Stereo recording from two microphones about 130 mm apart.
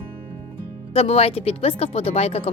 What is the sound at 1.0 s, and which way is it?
A woman's voice, 50° left (ahead or behind).